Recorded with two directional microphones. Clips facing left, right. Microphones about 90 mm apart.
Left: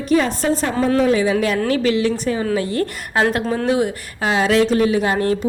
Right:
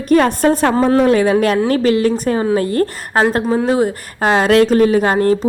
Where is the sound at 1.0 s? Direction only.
55° right (ahead or behind).